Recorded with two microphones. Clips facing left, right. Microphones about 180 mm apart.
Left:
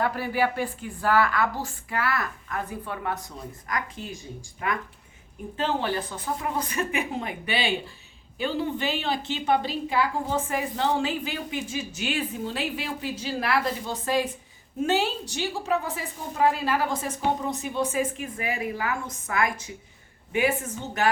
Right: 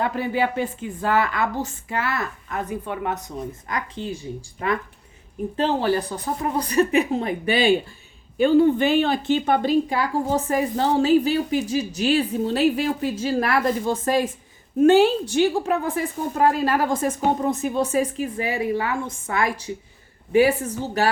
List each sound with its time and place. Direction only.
0.0 s a woman's voice: 20° right (ahead or behind)